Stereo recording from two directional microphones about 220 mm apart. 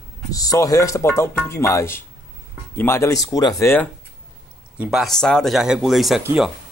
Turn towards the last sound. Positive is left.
turn(degrees=-5)  # may be behind; listen again after turning